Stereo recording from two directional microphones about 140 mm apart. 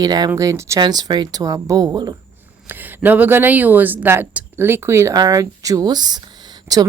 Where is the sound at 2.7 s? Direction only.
15° right (ahead or behind).